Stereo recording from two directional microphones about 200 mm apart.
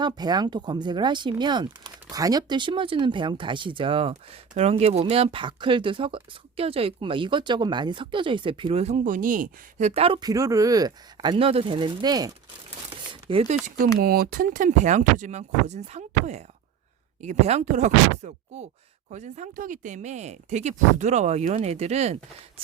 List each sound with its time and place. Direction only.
0.0 s speech: 20° right (ahead or behind)
13.1 s a sound: 25° right (ahead or behind)
13.7 s speech: 45° right (ahead or behind)